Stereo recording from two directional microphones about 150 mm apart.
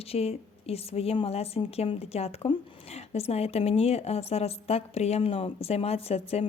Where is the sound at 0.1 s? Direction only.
40° left (ahead or behind).